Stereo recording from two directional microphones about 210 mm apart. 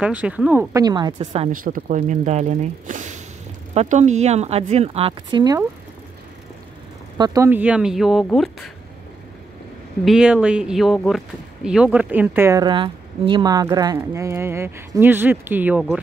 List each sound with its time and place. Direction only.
0.0 s speech: 5° right (ahead or behind); by 1.5 s 30° right (ahead or behind)
1.5 s speech: 40° right (ahead or behind); by 5.6 s 20° right (ahead or behind)
7.2 s speech: 15° right (ahead or behind); by 8.5 s centre (ahead or behind)
10.0 s speech: 5° right (ahead or behind)